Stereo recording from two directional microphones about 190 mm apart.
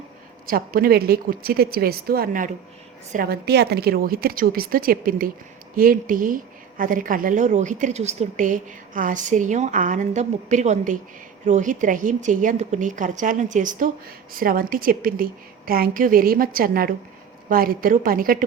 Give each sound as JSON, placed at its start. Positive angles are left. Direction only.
{"t": 0.4, "sound": "a woman's voice", "side_deg": -50}